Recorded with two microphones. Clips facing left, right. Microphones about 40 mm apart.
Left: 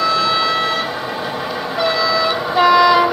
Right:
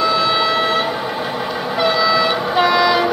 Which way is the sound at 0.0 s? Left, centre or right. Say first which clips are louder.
Even; centre.